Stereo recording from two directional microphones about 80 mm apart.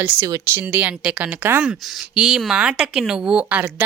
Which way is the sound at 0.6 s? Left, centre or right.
Centre.